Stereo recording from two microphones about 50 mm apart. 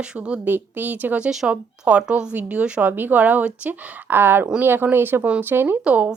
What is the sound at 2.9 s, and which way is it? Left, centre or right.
Speech, right.